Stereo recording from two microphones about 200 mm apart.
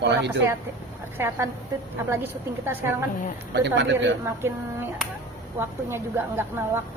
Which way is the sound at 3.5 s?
60° right (ahead or behind).